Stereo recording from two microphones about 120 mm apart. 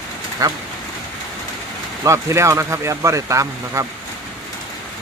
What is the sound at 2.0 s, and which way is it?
Speech, 25° right (ahead or behind).